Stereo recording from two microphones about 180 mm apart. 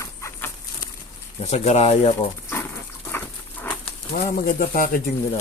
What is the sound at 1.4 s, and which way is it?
Speech, 40° left (ahead or behind).